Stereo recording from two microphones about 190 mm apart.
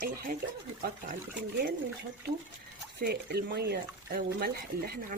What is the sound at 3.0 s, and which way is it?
Speech, 55° right (ahead or behind).